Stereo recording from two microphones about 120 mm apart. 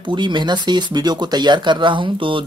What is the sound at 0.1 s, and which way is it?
Speech, 40° right (ahead or behind).